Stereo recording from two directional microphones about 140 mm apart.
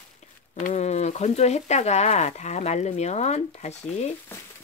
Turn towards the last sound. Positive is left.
turn(degrees=50)  # may be behind; listen again after turning